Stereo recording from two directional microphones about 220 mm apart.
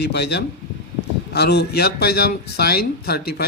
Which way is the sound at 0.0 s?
50° left (ahead or behind).